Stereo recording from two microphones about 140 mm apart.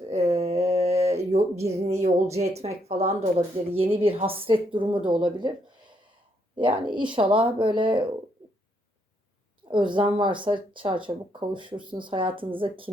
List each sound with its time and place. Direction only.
0.1 s a sound: 45° right (ahead or behind)
2.3 s speech: 50° right (ahead or behind)
9.6 s speech: 35° right (ahead or behind)